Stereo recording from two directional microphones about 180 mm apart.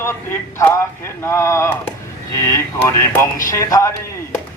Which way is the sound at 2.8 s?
15° left (ahead or behind).